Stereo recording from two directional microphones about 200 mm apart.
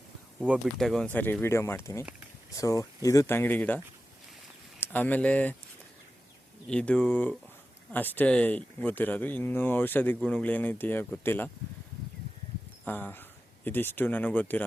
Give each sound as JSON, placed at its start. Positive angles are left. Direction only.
{"t": 0.3, "sound": "speech", "side_deg": -5}
{"t": 4.8, "sound": "speech", "side_deg": 10}
{"t": 6.7, "sound": "speech", "side_deg": 5}
{"t": 12.8, "sound": "speech", "side_deg": 10}